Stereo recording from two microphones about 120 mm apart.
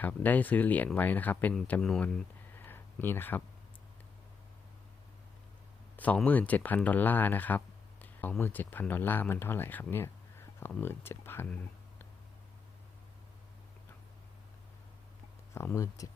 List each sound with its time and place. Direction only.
0.0 s speech: 15° left (ahead or behind)
2.6 s a sound: 15° left (ahead or behind)
6.2 s speech: 15° left (ahead or behind)
15.5 s speech: 25° left (ahead or behind)